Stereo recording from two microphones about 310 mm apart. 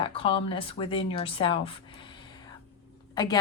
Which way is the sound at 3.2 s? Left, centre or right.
Centre.